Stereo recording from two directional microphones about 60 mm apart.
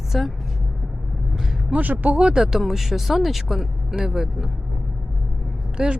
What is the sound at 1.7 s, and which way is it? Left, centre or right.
Speech, right.